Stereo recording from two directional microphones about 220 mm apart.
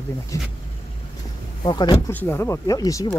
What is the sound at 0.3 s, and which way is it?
Speech, 15° left (ahead or behind).